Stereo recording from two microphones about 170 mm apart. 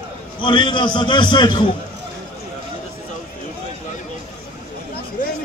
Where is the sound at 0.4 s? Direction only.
30° left (ahead or behind).